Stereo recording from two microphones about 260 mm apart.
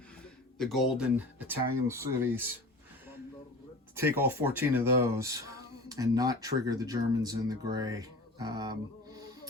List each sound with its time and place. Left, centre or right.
0.6 s speech: centre
3.9 s speech: centre